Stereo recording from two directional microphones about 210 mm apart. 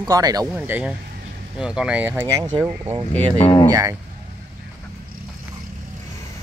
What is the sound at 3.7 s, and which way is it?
Speech, 15° right (ahead or behind).